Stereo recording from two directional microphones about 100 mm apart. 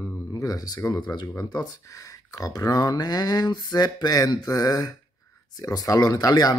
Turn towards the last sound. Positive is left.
turn(degrees=40)  # may be behind; listen again after turning